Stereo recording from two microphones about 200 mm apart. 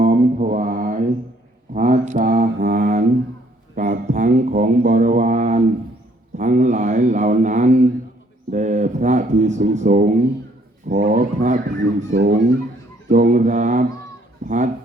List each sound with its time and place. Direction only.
0.0 s mantra: 40° right (ahead or behind)
2.6 s mantra: 55° right (ahead or behind)
3.8 s mantra: 40° right (ahead or behind)
6.3 s speech: 35° right (ahead or behind)